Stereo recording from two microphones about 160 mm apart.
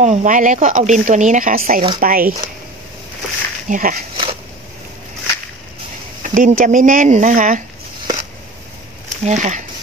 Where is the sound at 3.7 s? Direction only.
60° right (ahead or behind).